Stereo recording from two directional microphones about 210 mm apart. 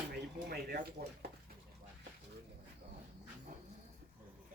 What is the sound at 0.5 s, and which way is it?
Speech, 50° right (ahead or behind).